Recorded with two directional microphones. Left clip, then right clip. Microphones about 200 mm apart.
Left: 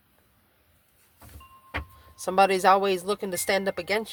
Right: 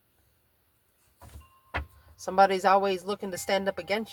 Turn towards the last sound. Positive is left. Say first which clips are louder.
# left 2 dB
turn(degrees=45)  # may be behind; listen again after turning